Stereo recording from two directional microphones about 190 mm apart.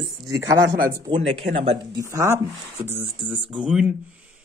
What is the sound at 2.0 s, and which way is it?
Speech, 15° right (ahead or behind).